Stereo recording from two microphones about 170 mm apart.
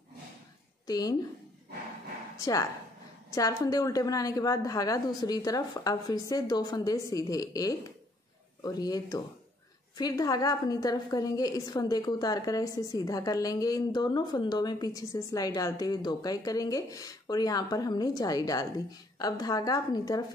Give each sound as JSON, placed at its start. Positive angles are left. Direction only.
{"t": 0.8, "sound": "a woman's voice", "side_deg": 20}
{"t": 2.3, "sound": "a woman's voice", "side_deg": 20}